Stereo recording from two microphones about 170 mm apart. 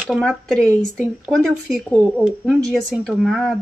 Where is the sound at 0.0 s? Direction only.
Centre (ahead or behind).